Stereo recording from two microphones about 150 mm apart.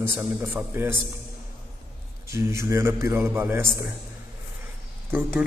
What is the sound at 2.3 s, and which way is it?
A man's voice, 20° right (ahead or behind).